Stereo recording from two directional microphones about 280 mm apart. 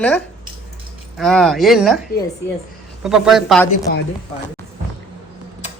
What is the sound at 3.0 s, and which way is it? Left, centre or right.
Speech, centre.